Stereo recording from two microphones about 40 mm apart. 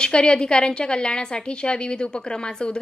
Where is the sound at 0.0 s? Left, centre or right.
Left.